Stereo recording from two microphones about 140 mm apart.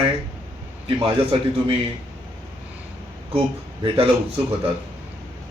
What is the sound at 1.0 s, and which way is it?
Speech, 40° right (ahead or behind).